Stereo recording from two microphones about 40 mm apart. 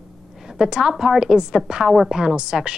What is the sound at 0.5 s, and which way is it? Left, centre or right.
A woman's voice, centre.